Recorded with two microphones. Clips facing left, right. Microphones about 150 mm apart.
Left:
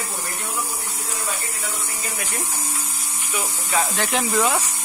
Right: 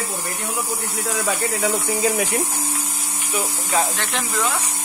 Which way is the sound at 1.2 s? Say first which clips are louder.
Right 10 dB; 80° right.